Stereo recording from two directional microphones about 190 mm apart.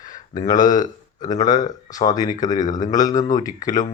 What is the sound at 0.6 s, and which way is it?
Speech, 40° left (ahead or behind).